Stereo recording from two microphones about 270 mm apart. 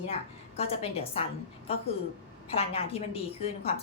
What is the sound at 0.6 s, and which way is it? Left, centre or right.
A woman's voice, left.